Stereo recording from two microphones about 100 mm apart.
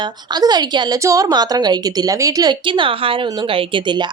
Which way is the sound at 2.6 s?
55° right (ahead or behind).